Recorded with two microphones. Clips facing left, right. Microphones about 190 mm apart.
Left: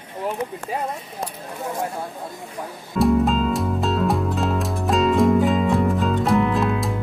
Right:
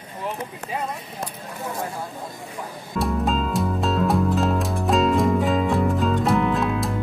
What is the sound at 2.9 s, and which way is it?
Music, centre (ahead or behind).